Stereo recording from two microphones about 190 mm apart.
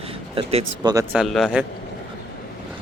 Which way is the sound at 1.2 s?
Centre (ahead or behind).